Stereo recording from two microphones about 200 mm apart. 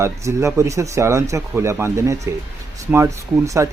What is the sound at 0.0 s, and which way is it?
Speech, 15° right (ahead or behind).